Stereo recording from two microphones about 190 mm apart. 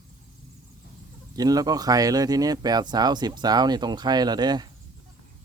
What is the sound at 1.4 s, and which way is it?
Speech, 20° right (ahead or behind).